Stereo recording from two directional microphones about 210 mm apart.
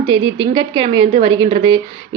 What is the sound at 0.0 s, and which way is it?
A woman's voice, 25° right (ahead or behind).